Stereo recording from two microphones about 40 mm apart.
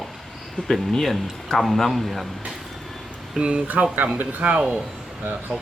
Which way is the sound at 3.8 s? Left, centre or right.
Right.